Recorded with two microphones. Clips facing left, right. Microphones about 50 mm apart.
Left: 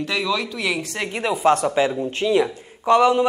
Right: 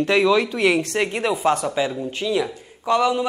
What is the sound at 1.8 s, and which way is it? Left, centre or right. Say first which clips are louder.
Speech: left 3 dB; centre.